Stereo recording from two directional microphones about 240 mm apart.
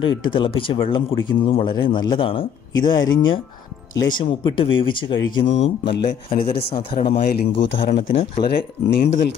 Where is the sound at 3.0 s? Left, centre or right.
Left.